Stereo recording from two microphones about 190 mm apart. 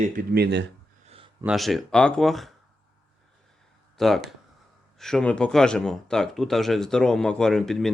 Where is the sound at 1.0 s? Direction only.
30° right (ahead or behind).